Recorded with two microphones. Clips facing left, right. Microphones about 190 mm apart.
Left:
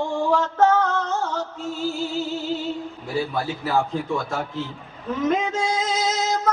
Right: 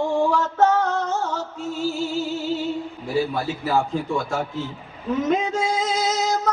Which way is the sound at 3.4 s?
Centre (ahead or behind).